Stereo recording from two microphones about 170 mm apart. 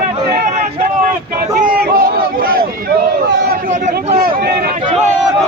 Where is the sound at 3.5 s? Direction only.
50° right (ahead or behind).